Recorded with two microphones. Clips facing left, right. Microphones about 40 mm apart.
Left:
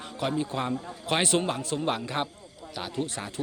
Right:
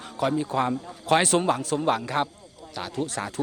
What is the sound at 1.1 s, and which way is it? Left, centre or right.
Speech, left.